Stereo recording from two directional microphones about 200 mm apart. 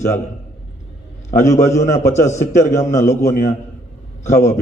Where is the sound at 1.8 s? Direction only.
35° left (ahead or behind).